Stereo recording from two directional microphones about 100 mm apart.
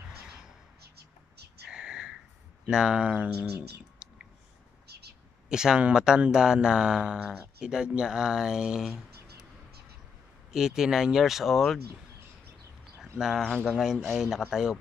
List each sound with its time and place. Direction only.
1.7 s whispering: 5° right (ahead or behind)
2.6 s speech: 5° right (ahead or behind)
5.5 s speech: 5° right (ahead or behind)
10.5 s speech: 5° right (ahead or behind)
13.4 s speech: 10° left (ahead or behind)
13.7 s speech: 5° right (ahead or behind)